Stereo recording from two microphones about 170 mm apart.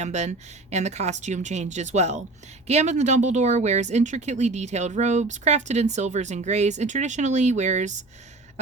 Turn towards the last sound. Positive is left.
turn(degrees=-45)  # may be behind; listen again after turning